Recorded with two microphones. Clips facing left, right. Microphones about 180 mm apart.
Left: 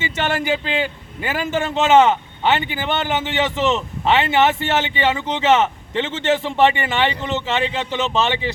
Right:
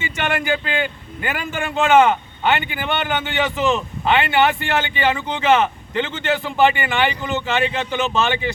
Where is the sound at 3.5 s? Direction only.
25° left (ahead or behind).